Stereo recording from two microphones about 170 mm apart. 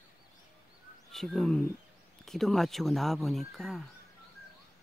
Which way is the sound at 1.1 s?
Centre (ahead or behind).